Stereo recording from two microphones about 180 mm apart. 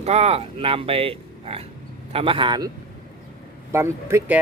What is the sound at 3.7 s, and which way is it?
Speech, 15° right (ahead or behind).